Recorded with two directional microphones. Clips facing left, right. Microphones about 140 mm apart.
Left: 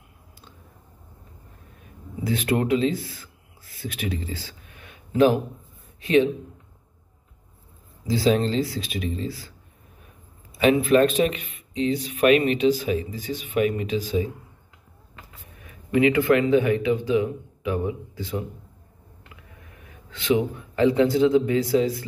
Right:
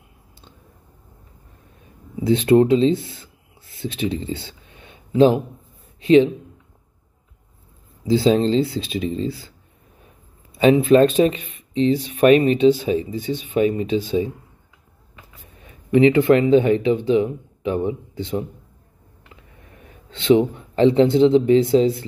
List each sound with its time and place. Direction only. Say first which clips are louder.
2.2 s speech: right 9 dB; 25° right (ahead or behind)
8.1 s speech: right 5 dB; 25° right (ahead or behind)
10.6 s speech: right 4 dB; 30° right (ahead or behind)
15.6 s speech: right 5 dB; 30° right (ahead or behind)
19.8 s a man's voice: right 3 dB; 30° right (ahead or behind)